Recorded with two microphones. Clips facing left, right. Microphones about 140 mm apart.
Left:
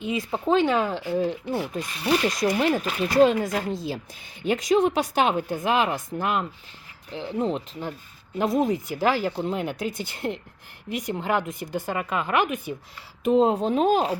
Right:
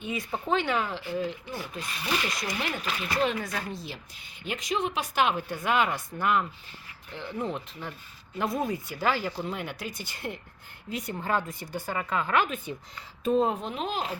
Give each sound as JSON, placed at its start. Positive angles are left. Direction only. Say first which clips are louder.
{"t": 0.0, "sound": "speech", "louder": "left 6 dB", "side_deg": 90}
{"t": 0.3, "sound": "speech", "louder": "left 7 dB", "side_deg": 30}
{"t": 3.3, "sound": "speech", "louder": "left 8 dB", "side_deg": 25}
{"t": 4.4, "sound": "speech", "louder": "left 10 dB", "side_deg": 40}
{"t": 5.5, "sound": "speech", "louder": "left 3 dB", "side_deg": 45}
{"t": 8.4, "sound": "speech", "louder": "left 6 dB", "side_deg": 20}
{"t": 13.5, "sound": "speech", "louder": "left 11 dB", "side_deg": 35}